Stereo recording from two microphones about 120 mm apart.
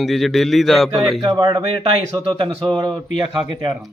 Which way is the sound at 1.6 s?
50° right (ahead or behind).